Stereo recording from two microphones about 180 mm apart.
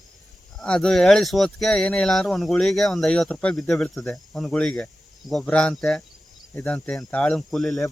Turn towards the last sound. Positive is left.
turn(degrees=0)  # may be behind; listen again after turning